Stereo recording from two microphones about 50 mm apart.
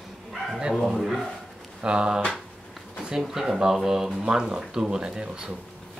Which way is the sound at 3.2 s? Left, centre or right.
Centre.